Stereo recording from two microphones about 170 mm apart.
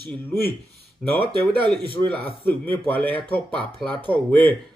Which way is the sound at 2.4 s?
10° left (ahead or behind).